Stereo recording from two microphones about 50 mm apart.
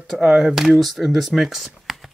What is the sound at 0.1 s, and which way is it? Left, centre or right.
Speech, centre.